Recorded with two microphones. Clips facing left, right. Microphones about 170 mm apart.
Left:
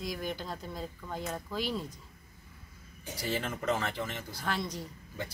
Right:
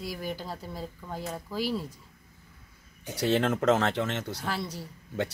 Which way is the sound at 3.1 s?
70° right (ahead or behind).